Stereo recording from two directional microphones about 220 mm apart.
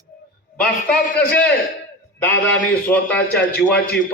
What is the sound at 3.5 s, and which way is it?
Speech, 45° left (ahead or behind).